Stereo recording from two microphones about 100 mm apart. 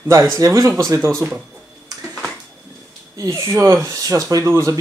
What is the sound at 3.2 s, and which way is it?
Speech, 30° right (ahead or behind).